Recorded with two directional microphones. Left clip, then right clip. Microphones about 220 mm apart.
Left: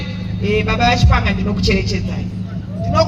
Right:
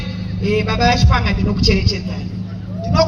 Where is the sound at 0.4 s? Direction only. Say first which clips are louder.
Left 1 dB; 15° right (ahead or behind).